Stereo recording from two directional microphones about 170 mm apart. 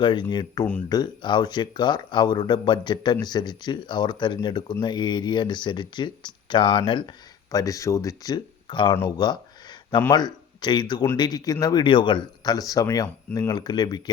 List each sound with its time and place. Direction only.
0.0 s speech: 25° left (ahead or behind)
9.1 s a sound: 25° left (ahead or behind)
10.1 s speech: 25° left (ahead or behind)